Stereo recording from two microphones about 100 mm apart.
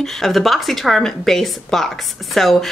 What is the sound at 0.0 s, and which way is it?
Speech, centre (ahead or behind).